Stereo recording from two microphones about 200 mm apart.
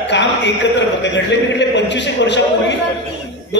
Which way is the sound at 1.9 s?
60° left (ahead or behind).